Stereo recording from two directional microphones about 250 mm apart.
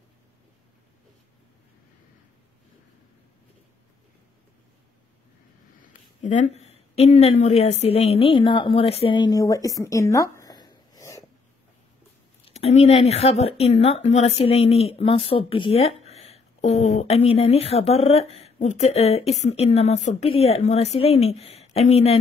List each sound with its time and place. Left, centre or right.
6.2 s a woman's voice: left; by 11.2 s centre
12.4 s speech: left